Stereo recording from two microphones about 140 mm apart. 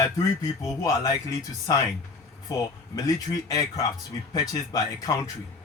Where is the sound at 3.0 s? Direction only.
25° left (ahead or behind).